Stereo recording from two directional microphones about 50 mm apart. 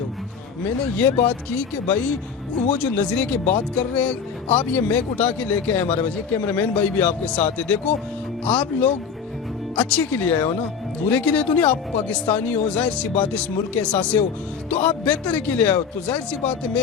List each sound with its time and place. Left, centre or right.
0.9 s speech: left